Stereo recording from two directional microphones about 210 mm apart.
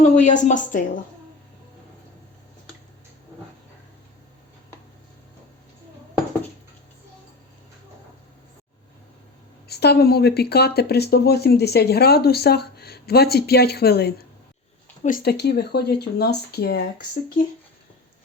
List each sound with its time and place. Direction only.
0.2 s speech: 35° left (ahead or behind)
9.6 s speech: 50° left (ahead or behind)